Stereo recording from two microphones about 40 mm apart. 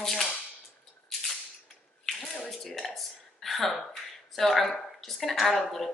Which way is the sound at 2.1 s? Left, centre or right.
Centre.